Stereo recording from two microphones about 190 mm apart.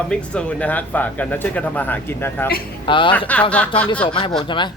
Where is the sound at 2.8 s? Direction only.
25° left (ahead or behind).